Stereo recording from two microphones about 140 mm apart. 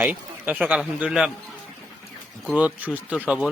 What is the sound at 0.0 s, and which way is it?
Speech, 10° right (ahead or behind).